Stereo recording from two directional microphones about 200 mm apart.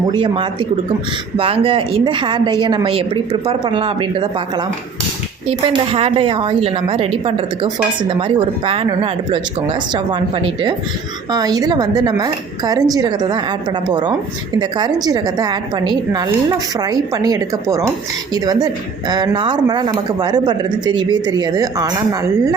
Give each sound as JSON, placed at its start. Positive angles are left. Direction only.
{"t": 0.1, "sound": "speech", "side_deg": -25}